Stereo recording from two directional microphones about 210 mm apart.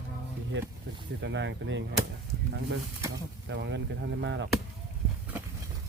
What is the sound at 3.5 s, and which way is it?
Speech, 55° right (ahead or behind).